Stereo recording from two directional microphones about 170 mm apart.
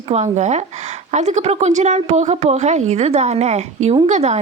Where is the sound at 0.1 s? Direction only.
45° right (ahead or behind).